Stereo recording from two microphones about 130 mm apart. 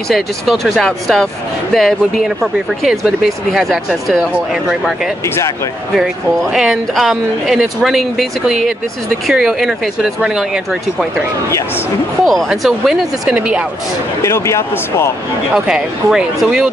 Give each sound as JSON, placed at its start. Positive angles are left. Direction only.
{"t": 0.1, "sound": "speech", "side_deg": 0}
{"t": 12.3, "sound": "speech", "side_deg": 0}
{"t": 14.2, "sound": "speech", "side_deg": 20}
{"t": 15.5, "sound": "speech", "side_deg": -5}